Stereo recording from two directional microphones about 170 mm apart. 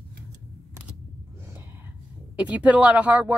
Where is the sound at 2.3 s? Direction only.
5° right (ahead or behind).